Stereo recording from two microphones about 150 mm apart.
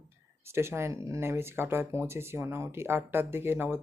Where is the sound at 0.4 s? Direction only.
15° right (ahead or behind).